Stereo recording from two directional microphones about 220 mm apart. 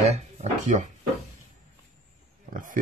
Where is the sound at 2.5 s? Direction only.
40° right (ahead or behind).